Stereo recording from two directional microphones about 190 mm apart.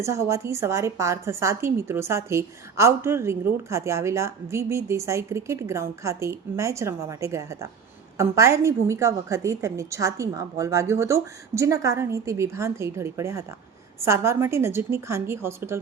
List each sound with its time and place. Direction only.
0.0 s a woman's voice: 15° right (ahead or behind)